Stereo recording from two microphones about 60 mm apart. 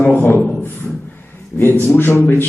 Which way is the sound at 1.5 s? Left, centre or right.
Right.